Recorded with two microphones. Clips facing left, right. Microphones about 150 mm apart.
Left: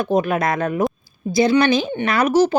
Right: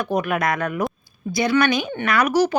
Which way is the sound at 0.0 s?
25° left (ahead or behind).